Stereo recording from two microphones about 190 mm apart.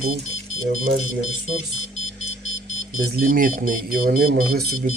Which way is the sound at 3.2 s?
45° right (ahead or behind).